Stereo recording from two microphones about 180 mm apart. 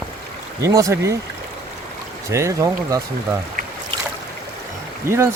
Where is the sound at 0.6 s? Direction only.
20° right (ahead or behind).